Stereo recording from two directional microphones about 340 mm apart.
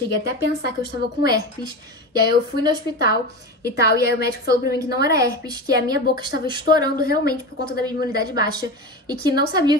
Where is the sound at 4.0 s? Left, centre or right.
Left.